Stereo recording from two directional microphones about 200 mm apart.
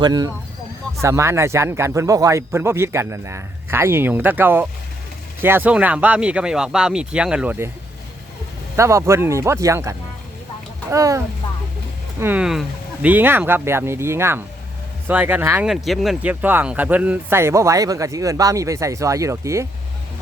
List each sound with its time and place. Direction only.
0.0 s speech: 20° right (ahead or behind)
8.7 s speech: 15° right (ahead or behind)
10.9 s speech: 15° right (ahead or behind)
12.2 s speech: 5° right (ahead or behind)
15.7 s speech: centre (ahead or behind)